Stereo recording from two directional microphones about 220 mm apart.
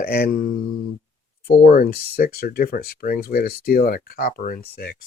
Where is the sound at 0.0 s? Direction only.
45° left (ahead or behind).